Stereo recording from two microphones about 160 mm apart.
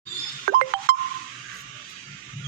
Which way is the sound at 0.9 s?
70° right (ahead or behind).